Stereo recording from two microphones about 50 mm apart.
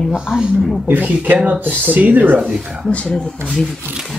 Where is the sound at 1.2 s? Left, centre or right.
Right.